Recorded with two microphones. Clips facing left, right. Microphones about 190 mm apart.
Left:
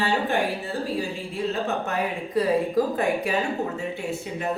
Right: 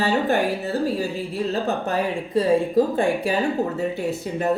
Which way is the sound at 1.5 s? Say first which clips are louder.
Right 4 dB; 35° right (ahead or behind).